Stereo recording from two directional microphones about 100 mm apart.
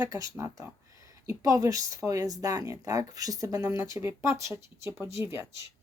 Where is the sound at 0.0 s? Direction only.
35° right (ahead or behind).